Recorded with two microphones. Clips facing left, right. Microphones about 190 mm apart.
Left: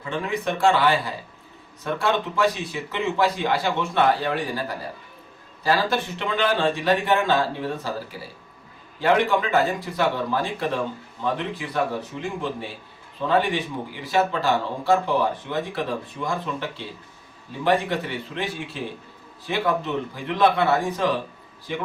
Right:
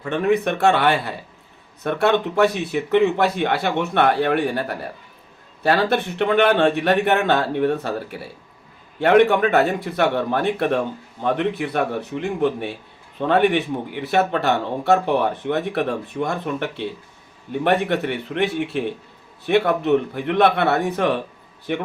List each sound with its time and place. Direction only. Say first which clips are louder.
0.1 s speech: right 7 dB; 65° right (ahead or behind)